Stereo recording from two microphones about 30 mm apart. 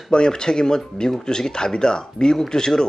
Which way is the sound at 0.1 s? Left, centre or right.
Left.